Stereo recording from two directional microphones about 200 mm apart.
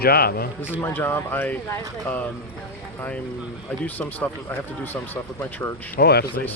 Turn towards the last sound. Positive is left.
turn(degrees=55)  # may be behind; listen again after turning